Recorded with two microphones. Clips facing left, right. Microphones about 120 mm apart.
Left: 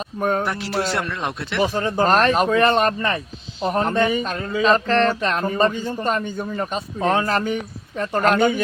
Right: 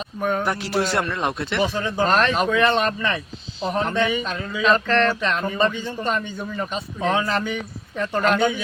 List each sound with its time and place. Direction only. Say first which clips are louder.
0.2 s speech: left 2 dB; 40° left (ahead or behind)
0.4 s speech: right 1 dB; centre (ahead or behind)
1.7 s speech: left 5 dB; 45° left (ahead or behind)